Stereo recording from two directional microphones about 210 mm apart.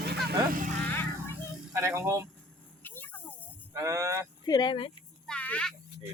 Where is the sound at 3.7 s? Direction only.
15° right (ahead or behind).